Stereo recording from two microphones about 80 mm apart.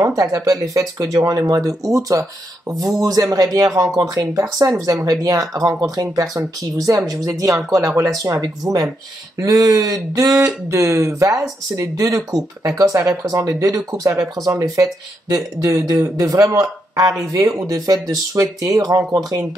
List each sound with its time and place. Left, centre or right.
0.0 s speech: right